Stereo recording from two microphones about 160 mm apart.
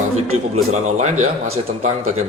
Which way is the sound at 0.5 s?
45° right (ahead or behind).